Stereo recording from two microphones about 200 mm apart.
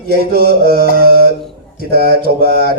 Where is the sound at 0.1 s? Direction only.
50° right (ahead or behind).